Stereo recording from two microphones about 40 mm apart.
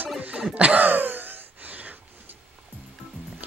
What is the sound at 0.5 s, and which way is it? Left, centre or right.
Gasp, right.